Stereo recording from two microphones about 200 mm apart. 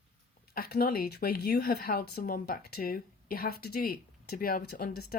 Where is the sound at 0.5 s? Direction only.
50° left (ahead or behind).